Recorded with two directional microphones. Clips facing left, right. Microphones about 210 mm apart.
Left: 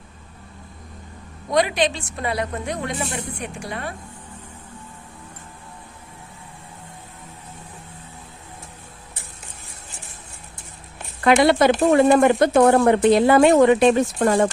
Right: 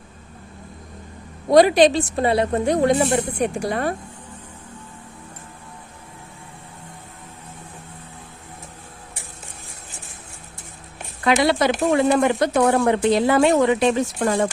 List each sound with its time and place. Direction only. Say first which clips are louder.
1.5 s a woman's voice: right 7 dB; 35° right (ahead or behind)
11.2 s speech: left 3 dB; 55° left (ahead or behind)